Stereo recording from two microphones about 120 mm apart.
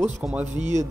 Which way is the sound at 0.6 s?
75° right (ahead or behind).